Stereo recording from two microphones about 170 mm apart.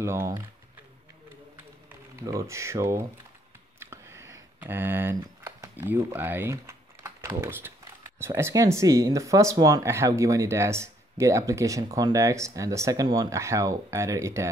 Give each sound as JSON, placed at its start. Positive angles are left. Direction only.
{"t": 0.0, "sound": "speech", "side_deg": -15}
{"t": 1.9, "sound": "speech", "side_deg": -15}
{"t": 3.8, "sound": "a sound", "side_deg": -15}
{"t": 4.6, "sound": "speech", "side_deg": -10}